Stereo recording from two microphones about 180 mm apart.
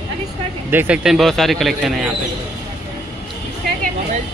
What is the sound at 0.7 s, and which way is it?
Speech, 10° right (ahead or behind).